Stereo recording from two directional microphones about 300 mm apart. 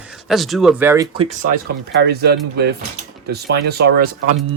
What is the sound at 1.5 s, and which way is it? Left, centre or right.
Speech, right.